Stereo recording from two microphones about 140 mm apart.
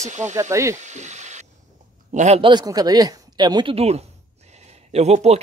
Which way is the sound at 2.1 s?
55° right (ahead or behind).